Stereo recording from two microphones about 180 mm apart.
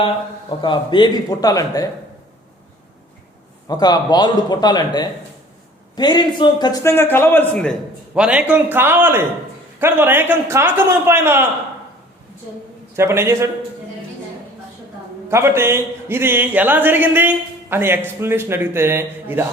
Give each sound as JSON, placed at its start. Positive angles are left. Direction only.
{"t": 0.6, "sound": "speech", "side_deg": 25}
{"t": 3.7, "sound": "a man's voice", "side_deg": 20}
{"t": 8.1, "sound": "a man's voice", "side_deg": -5}
{"t": 13.0, "sound": "a man's voice", "side_deg": -15}
{"t": 15.3, "sound": "a man's voice", "side_deg": -15}